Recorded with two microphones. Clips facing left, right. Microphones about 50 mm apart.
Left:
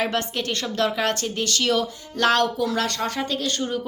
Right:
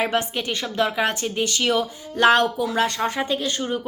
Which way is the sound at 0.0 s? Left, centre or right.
Centre.